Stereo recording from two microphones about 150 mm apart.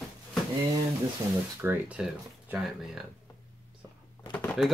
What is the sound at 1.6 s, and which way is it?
Speech, 15° right (ahead or behind).